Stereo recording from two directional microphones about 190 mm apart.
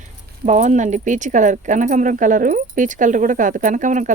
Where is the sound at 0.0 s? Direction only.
40° right (ahead or behind).